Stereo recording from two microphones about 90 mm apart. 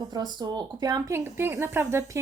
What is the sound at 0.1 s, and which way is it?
Speech, 50° right (ahead or behind).